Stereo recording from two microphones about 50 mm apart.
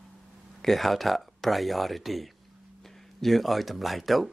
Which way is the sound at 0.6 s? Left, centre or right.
Centre.